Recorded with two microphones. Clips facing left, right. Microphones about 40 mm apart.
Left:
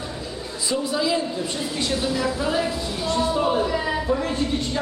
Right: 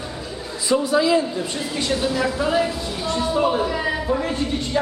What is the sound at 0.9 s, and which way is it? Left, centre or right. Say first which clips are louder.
Speech: right 5 dB; right.